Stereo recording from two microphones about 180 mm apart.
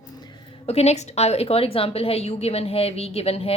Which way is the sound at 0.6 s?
35° left (ahead or behind).